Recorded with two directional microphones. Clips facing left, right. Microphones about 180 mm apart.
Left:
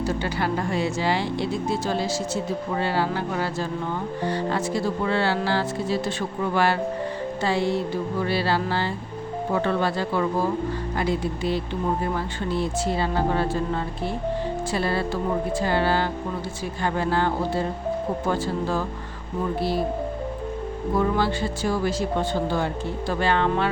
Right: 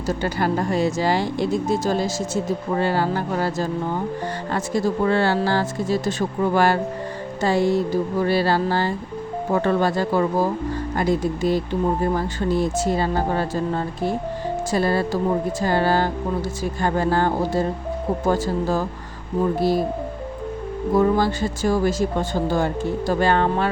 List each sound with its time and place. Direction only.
0.2 s speech: 45° right (ahead or behind)
14.7 s speech: 45° right (ahead or behind)
20.9 s speech: 45° right (ahead or behind)